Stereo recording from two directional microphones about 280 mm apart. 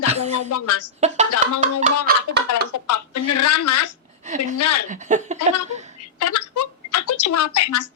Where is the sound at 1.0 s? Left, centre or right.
Right.